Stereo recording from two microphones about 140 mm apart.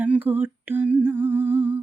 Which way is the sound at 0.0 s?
10° right (ahead or behind).